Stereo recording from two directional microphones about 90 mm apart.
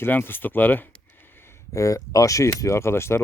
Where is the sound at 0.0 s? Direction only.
25° left (ahead or behind).